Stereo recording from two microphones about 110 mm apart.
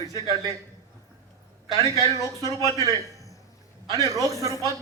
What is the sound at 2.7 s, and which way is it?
A man's voice, 35° right (ahead or behind).